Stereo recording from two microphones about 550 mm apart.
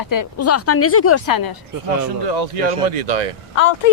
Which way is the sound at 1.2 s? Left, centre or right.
Left.